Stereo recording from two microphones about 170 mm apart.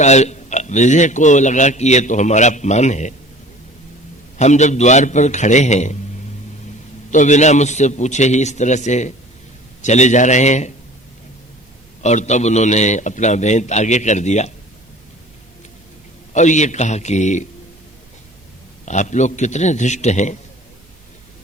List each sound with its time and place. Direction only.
0.0 s speech: 40° left (ahead or behind)
4.4 s speech: 45° left (ahead or behind)
7.1 s speech: 45° left (ahead or behind)
12.0 s speech: 45° left (ahead or behind)
16.3 s speech: 45° left (ahead or behind)
18.9 s speech: 45° left (ahead or behind)